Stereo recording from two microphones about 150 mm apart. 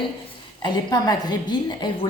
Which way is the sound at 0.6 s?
25° left (ahead or behind).